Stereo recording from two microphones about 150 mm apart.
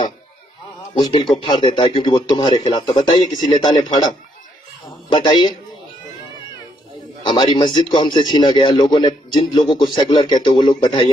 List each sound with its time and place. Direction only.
0.9 s a man's voice: 30° left (ahead or behind)
5.1 s a man's voice: 30° left (ahead or behind)
7.2 s a man's voice: 30° left (ahead or behind)